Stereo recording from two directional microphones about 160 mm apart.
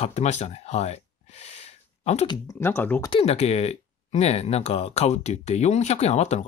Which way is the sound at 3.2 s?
40° left (ahead or behind).